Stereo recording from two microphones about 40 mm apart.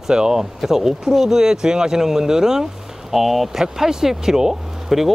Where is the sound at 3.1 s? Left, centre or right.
Centre.